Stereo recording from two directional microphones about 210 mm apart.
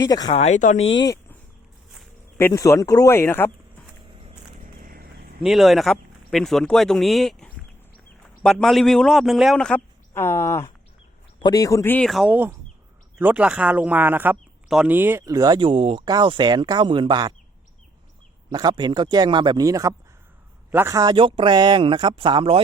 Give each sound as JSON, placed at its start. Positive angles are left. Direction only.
{"t": 0.0, "sound": "speech", "side_deg": 15}
{"t": 0.3, "sound": "speech", "side_deg": 30}
{"t": 0.9, "sound": "speech", "side_deg": 20}
{"t": 2.4, "sound": "speech", "side_deg": 15}
{"t": 4.1, "sound": "a sound", "side_deg": -25}
{"t": 4.8, "sound": "a sound", "side_deg": -45}
{"t": 5.4, "sound": "speech", "side_deg": 0}
{"t": 18.5, "sound": "speech", "side_deg": -20}